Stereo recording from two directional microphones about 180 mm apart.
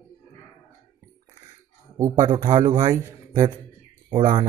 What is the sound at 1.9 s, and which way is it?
A man's voice, 20° right (ahead or behind).